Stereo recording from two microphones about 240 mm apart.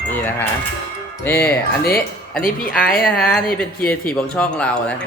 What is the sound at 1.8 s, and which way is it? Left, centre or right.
A woman's voice, left.